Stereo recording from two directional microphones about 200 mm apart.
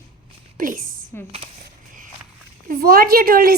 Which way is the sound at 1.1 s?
10° left (ahead or behind).